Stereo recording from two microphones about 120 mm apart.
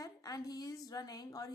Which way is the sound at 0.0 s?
30° left (ahead or behind).